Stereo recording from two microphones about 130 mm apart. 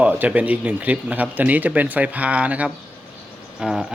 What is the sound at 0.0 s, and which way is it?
Speech, 10° right (ahead or behind).